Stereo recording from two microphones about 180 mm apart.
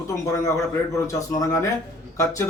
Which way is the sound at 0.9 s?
20° left (ahead or behind).